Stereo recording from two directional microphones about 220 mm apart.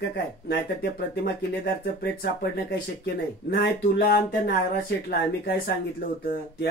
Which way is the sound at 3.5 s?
45° left (ahead or behind).